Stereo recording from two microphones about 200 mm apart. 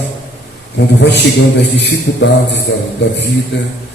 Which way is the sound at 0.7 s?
60° left (ahead or behind).